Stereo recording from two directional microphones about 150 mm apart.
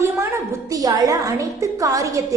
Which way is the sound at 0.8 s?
25° right (ahead or behind).